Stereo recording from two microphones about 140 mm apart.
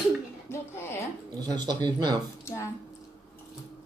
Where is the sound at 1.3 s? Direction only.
30° right (ahead or behind).